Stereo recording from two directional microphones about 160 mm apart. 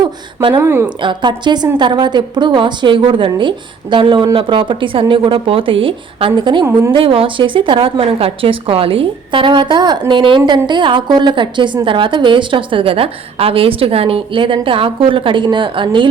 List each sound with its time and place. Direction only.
0.0 s a sound: 25° right (ahead or behind)
0.6 s a woman's voice: 15° right (ahead or behind)
1.0 s a woman's voice: 30° right (ahead or behind)